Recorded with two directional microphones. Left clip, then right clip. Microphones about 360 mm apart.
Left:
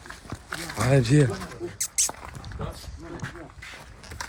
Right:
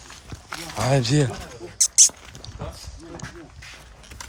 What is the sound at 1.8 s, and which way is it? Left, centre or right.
Rodents, centre.